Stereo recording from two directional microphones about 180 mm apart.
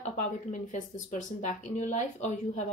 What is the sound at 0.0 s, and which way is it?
Speech, 40° left (ahead or behind).